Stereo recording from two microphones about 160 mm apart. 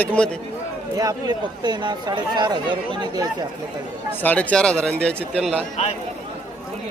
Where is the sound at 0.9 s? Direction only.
25° right (ahead or behind).